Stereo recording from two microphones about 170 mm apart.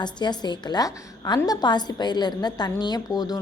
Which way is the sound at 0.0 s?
25° left (ahead or behind).